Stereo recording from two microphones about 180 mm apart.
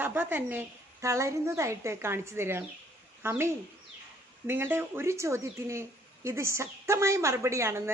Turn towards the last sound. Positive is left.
turn(degrees=-15)  # may be behind; listen again after turning